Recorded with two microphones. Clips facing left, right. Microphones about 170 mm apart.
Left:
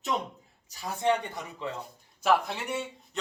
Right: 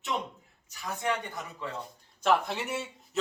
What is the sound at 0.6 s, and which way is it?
Speech, 35° left (ahead or behind).